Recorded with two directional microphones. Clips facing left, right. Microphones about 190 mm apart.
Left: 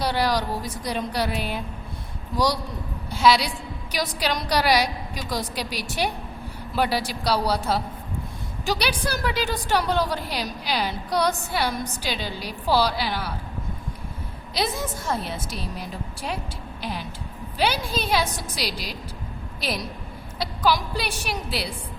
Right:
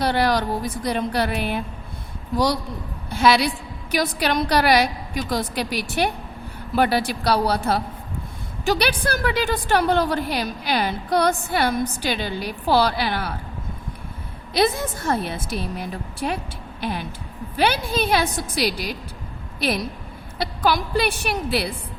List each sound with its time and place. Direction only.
0.0 s a woman's voice: 55° right (ahead or behind)
3.1 s a woman's voice: 55° right (ahead or behind)
14.5 s a woman's voice: 60° right (ahead or behind)